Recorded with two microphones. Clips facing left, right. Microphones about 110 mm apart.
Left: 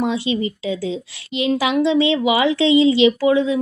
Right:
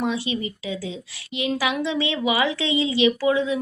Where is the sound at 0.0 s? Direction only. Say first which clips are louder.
Left 5 dB; 25° left (ahead or behind).